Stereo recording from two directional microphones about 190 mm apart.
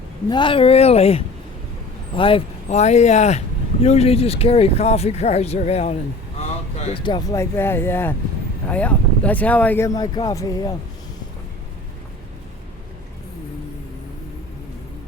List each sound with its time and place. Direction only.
0.3 s speech: 25° left (ahead or behind)